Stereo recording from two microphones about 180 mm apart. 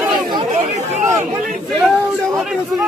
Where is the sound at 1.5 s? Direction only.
Centre (ahead or behind).